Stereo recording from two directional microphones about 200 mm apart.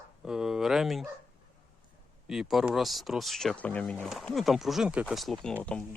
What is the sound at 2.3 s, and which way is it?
Speech, centre (ahead or behind).